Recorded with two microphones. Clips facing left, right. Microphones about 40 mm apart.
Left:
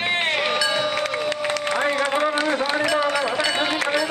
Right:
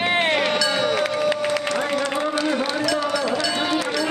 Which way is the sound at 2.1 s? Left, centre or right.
Left.